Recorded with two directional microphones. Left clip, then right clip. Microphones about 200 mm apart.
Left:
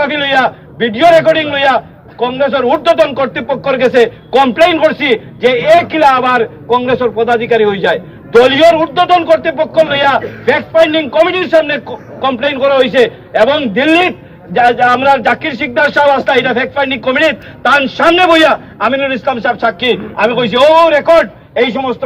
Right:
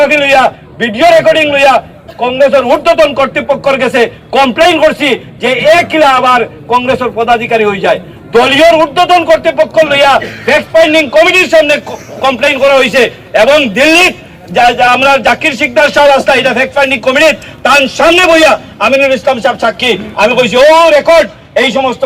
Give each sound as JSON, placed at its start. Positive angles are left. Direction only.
{"t": 0.1, "sound": "a man's voice", "side_deg": -35}
{"t": 7.2, "sound": "a man's voice", "side_deg": -40}